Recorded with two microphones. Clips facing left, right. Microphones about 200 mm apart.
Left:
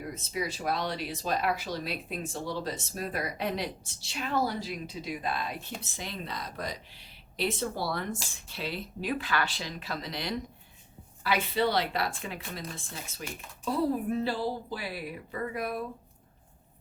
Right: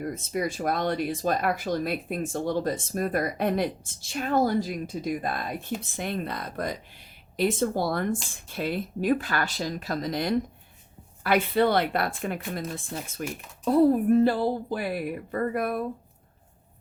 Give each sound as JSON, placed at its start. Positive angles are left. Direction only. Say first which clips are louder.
{"t": 0.0, "sound": "speech", "louder": "right 6 dB", "side_deg": -50}